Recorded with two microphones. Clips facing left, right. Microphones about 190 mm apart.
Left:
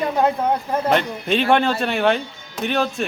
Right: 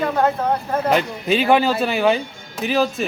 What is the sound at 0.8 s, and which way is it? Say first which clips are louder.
Speech: right 1 dB; 5° right (ahead or behind).